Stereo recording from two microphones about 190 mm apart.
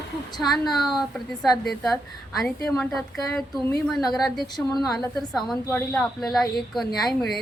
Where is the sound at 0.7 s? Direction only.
Centre (ahead or behind).